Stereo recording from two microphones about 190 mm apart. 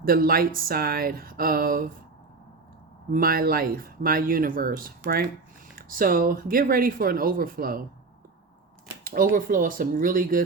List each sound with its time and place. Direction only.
0.0 s speech: 50° right (ahead or behind)
3.1 s speech: 50° right (ahead or behind)
9.3 s speech: 45° right (ahead or behind)